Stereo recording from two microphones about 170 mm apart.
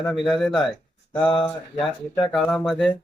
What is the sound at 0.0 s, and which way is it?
Speech, centre (ahead or behind).